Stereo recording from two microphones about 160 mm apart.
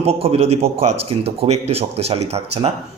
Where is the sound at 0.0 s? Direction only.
40° right (ahead or behind).